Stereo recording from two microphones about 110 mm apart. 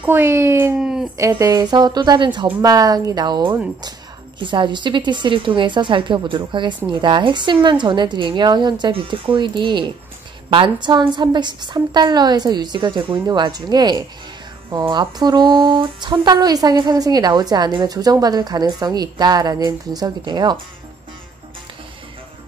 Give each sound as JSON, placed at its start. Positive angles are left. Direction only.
{"t": 0.0, "sound": "a child's voice", "side_deg": -20}
{"t": 0.7, "sound": "speech", "side_deg": -5}
{"t": 1.4, "sound": "a woman's voice", "side_deg": -35}